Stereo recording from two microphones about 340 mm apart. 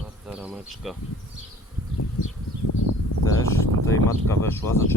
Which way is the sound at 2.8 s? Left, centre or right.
Left.